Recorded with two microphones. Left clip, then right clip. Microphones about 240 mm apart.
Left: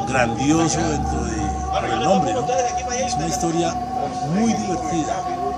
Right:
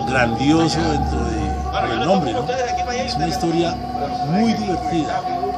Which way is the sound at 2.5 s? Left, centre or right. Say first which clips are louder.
Even; left.